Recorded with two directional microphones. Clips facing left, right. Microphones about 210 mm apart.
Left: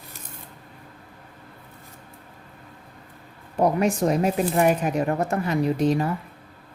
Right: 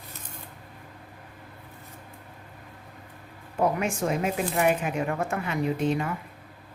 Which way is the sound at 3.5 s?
35° left (ahead or behind).